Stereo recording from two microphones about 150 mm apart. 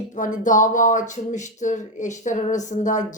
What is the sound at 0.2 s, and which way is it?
A woman's voice, 60° left (ahead or behind).